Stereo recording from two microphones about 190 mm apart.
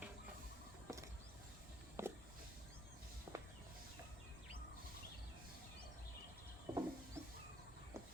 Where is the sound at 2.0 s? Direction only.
15° right (ahead or behind).